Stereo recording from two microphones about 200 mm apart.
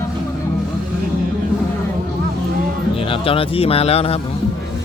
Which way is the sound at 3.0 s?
25° left (ahead or behind).